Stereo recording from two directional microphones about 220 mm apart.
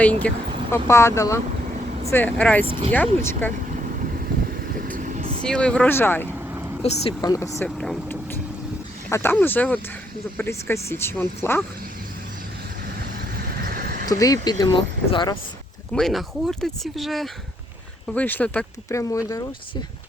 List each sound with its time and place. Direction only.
0.0 s speech: 5° left (ahead or behind)
2.6 s speech: 25° right (ahead or behind)
2.9 s speech: 10° left (ahead or behind)
4.8 s vehicle: 35° right (ahead or behind)
5.5 s speech: 5° left (ahead or behind)
7.8 s vehicle: 5° left (ahead or behind)
9.0 s speech: 10° left (ahead or behind)
13.6 s vehicle: 45° right (ahead or behind)
14.1 s speech: 15° left (ahead or behind)
15.9 s speech: centre (ahead or behind)